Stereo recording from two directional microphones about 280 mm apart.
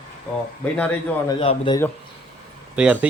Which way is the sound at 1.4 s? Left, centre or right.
Left.